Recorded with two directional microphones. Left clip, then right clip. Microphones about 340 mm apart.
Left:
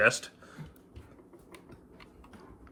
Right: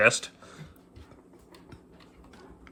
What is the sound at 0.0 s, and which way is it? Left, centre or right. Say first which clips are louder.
Speech: right 3 dB; centre.